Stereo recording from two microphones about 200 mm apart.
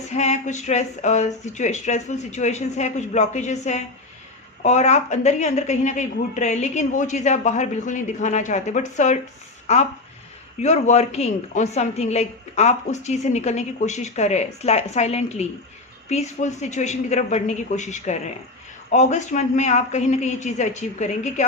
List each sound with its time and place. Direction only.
0.1 s a woman's voice: 35° left (ahead or behind)
10.6 s a woman's voice: 35° left (ahead or behind)